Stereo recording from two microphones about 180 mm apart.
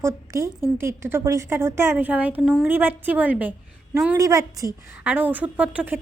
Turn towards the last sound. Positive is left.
turn(degrees=-10)  # may be behind; listen again after turning